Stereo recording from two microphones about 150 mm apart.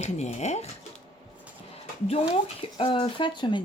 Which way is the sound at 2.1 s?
40° left (ahead or behind).